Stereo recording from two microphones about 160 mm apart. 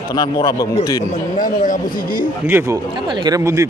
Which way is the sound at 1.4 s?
55° left (ahead or behind).